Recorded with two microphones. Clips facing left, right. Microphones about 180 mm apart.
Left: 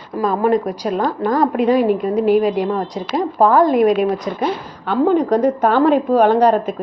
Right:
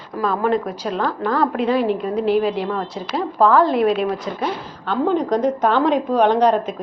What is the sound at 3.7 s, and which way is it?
Speech, 45° left (ahead or behind).